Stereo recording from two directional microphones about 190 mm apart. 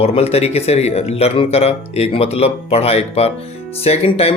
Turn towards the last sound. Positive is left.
turn(degrees=30)  # may be behind; listen again after turning